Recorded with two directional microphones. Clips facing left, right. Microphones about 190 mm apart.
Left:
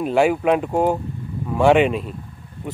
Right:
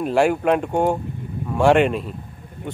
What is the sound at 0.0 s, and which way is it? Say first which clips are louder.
Speech: left 1 dB; centre (ahead or behind).